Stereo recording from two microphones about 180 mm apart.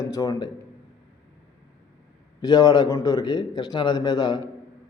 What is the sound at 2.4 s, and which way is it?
A man's voice, 20° left (ahead or behind).